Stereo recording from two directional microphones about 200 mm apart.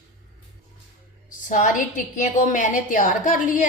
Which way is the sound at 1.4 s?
40° left (ahead or behind).